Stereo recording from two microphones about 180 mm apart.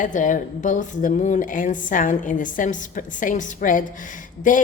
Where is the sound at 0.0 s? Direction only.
45° left (ahead or behind).